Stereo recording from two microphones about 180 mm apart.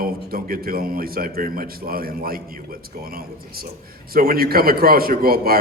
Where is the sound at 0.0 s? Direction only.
55° right (ahead or behind).